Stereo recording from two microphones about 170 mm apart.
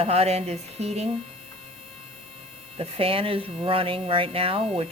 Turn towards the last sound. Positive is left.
turn(degrees=-35)  # may be behind; listen again after turning